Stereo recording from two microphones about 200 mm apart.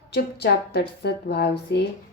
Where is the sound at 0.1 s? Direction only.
55° left (ahead or behind).